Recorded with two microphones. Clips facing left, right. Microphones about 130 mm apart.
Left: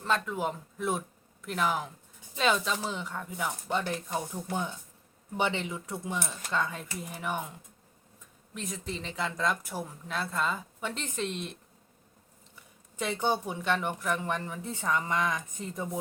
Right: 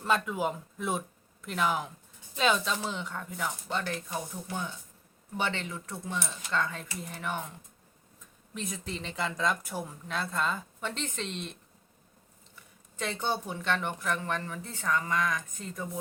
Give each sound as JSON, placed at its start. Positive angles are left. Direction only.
{"t": 0.0, "sound": "speech", "side_deg": -5}
{"t": 5.4, "sound": "speech", "side_deg": 15}
{"t": 8.5, "sound": "speech", "side_deg": 0}
{"t": 13.0, "sound": "speech", "side_deg": 10}